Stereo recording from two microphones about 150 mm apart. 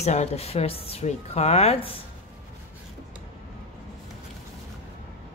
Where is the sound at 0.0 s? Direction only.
45° left (ahead or behind).